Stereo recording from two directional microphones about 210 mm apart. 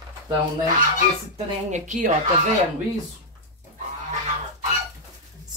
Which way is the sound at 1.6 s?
35° right (ahead or behind).